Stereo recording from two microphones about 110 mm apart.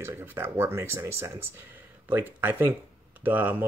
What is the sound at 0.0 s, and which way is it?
Speech, 20° right (ahead or behind).